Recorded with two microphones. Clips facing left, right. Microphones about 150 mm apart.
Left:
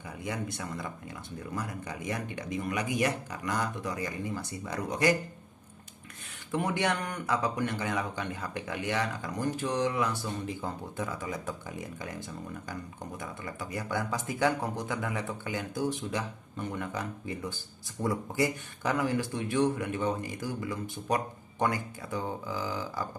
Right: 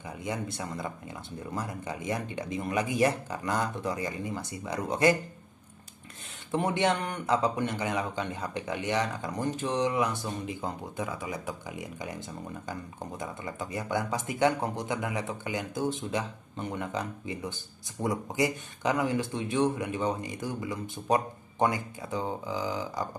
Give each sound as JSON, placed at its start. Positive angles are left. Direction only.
{"t": 0.2, "sound": "speech", "side_deg": -25}
{"t": 6.5, "sound": "speech", "side_deg": -25}
{"t": 13.2, "sound": "speech", "side_deg": -25}